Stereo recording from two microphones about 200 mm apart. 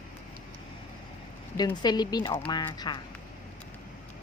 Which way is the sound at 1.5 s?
20° left (ahead or behind).